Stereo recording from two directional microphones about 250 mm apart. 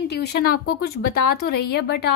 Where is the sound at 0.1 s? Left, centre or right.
Left.